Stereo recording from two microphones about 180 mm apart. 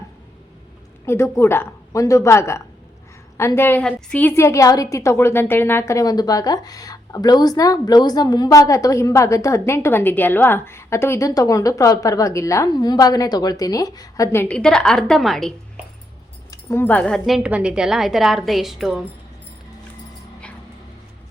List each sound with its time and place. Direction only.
1.0 s a woman's voice: 15° left (ahead or behind)
16.5 s a woman's voice: 15° left (ahead or behind); by 19.0 s centre (ahead or behind)